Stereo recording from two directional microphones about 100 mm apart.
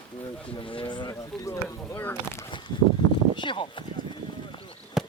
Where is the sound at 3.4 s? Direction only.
55° left (ahead or behind).